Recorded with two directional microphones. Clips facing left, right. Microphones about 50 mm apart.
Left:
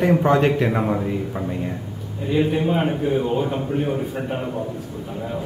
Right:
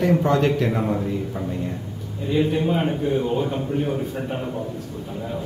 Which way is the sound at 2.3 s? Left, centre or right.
Centre.